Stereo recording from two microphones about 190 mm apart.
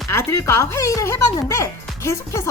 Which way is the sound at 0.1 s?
15° left (ahead or behind).